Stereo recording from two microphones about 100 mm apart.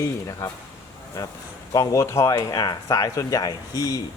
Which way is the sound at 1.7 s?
35° left (ahead or behind).